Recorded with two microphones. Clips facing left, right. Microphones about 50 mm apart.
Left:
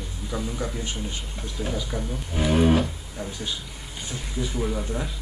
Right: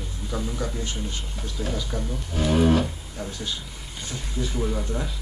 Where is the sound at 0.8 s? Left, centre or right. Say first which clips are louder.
Even; centre.